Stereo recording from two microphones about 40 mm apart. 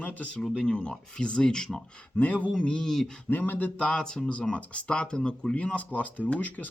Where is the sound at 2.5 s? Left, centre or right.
Left.